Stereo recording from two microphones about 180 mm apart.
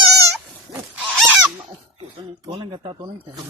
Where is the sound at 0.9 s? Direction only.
5° right (ahead or behind).